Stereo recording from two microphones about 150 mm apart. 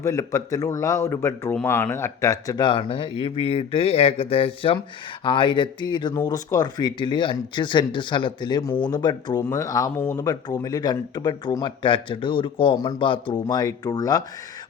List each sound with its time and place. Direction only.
0.0 s speech: 20° left (ahead or behind)